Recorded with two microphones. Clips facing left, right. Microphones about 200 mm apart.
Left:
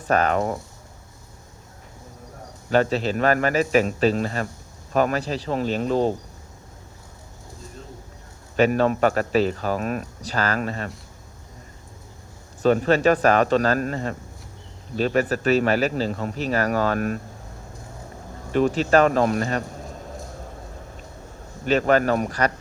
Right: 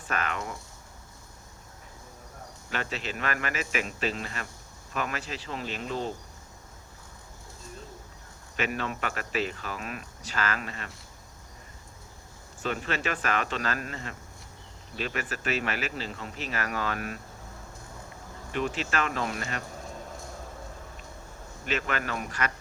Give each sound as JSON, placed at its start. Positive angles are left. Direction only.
{"t": 0.1, "sound": "speech", "side_deg": 40}
{"t": 2.6, "sound": "speech", "side_deg": 40}
{"t": 8.5, "sound": "speech", "side_deg": 40}
{"t": 12.6, "sound": "speech", "side_deg": 40}
{"t": 18.5, "sound": "speech", "side_deg": 40}
{"t": 21.7, "sound": "speech", "side_deg": 40}